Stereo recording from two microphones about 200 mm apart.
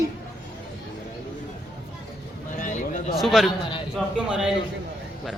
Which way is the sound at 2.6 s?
40° left (ahead or behind).